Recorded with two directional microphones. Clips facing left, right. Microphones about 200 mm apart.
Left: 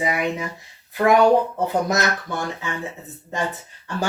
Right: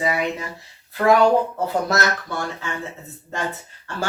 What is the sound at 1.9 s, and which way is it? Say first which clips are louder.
Speech: even; 15° left (ahead or behind).